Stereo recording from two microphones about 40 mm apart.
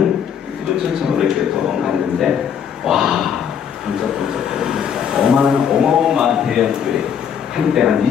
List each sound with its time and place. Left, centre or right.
1.0 s a man's voice: centre
2.8 s a sound: centre
7.5 s a man's voice: centre